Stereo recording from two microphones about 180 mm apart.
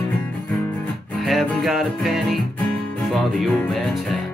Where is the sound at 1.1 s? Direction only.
Centre (ahead or behind).